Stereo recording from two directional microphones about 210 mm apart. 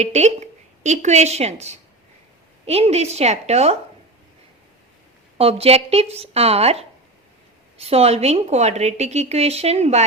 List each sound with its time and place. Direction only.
0.0 s a woman's voice: 30° right (ahead or behind)
5.4 s a woman's voice: 30° right (ahead or behind)